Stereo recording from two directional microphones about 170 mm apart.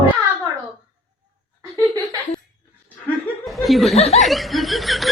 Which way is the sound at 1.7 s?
20° right (ahead or behind).